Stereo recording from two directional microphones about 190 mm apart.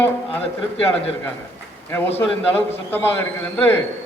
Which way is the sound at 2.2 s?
10° left (ahead or behind).